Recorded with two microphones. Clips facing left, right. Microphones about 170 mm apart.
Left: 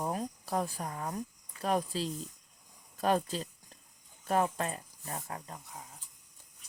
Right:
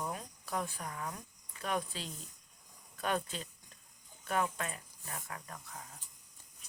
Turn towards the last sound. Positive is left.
turn(degrees=30)  # may be behind; listen again after turning